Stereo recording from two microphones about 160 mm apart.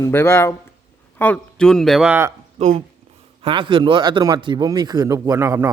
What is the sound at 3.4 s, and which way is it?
A man's voice, 30° right (ahead or behind).